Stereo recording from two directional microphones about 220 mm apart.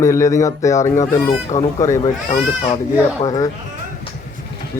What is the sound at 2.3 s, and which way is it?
Speech, 35° left (ahead or behind).